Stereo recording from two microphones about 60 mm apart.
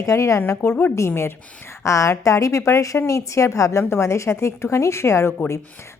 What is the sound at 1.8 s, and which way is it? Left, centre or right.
A woman's voice, left.